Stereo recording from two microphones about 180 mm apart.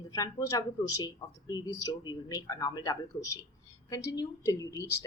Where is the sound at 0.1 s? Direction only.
20° left (ahead or behind).